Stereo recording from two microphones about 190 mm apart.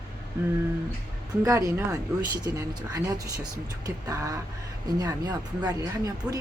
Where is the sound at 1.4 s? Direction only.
15° right (ahead or behind).